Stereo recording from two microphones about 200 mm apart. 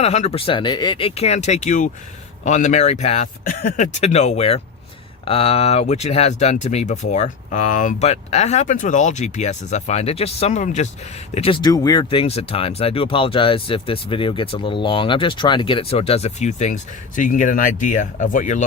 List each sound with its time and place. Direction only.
0.0 s speech: 35° left (ahead or behind)